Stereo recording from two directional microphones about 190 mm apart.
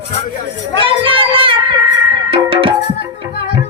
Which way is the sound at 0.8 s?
30° right (ahead or behind).